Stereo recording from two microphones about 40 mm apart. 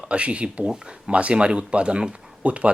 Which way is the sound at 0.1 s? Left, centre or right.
Right.